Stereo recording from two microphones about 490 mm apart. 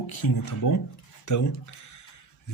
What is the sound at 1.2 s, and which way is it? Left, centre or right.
Speech, left.